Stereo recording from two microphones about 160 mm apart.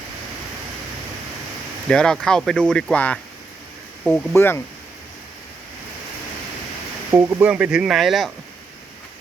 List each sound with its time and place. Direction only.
1.9 s speech: 5° left (ahead or behind)
4.4 s speech: 15° left (ahead or behind)
7.1 s speech: 15° right (ahead or behind)